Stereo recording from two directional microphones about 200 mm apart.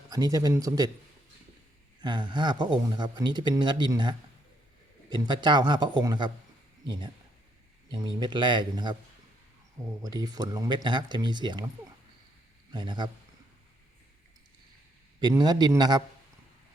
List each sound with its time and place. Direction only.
0.1 s speech: 20° right (ahead or behind)
2.0 s speech: 20° right (ahead or behind)
10.0 s speech: 20° right (ahead or behind)
12.7 s speech: 25° right (ahead or behind)
15.2 s speech: 20° right (ahead or behind)